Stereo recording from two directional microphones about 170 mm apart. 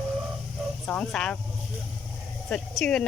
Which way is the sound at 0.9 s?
5° left (ahead or behind).